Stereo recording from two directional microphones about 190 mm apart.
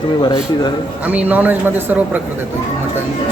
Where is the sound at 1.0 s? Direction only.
10° right (ahead or behind).